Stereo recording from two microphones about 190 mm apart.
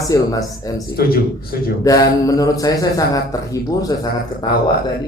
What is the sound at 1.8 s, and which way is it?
Mantra, 20° left (ahead or behind).